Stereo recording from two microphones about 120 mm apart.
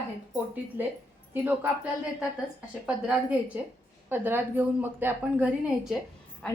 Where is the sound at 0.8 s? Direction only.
15° right (ahead or behind).